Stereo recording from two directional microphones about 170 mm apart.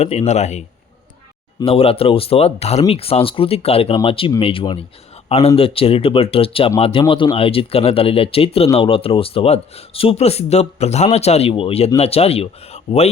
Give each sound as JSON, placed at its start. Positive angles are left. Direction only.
{"t": 0.0, "sound": "speech", "side_deg": 40}